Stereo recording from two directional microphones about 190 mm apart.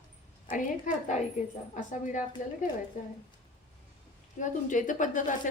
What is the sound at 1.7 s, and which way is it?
Speech, 40° left (ahead or behind).